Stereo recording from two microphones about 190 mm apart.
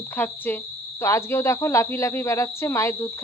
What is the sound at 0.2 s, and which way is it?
Speech, 10° left (ahead or behind).